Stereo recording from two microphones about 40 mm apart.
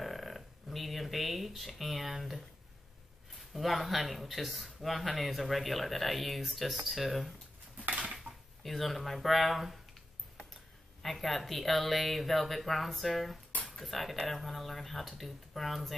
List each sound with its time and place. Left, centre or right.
0.0 s a sound: centre
3.3 s speech: centre
8.3 s drawer open or close: right
8.6 s speech: centre
11.0 s speech: centre